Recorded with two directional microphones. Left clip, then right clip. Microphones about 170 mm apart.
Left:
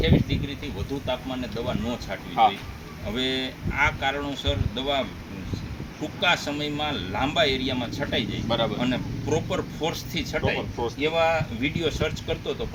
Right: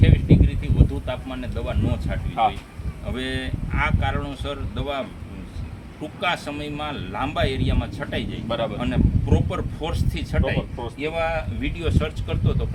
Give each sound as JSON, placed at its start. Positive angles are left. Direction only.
{"t": 1.0, "sound": "speech", "side_deg": 15}
{"t": 2.3, "sound": "speech", "side_deg": -15}
{"t": 3.1, "sound": "speech", "side_deg": 10}
{"t": 8.4, "sound": "speech", "side_deg": -15}
{"t": 8.8, "sound": "speech", "side_deg": 10}
{"t": 10.4, "sound": "speech", "side_deg": -15}
{"t": 11.0, "sound": "speech", "side_deg": 5}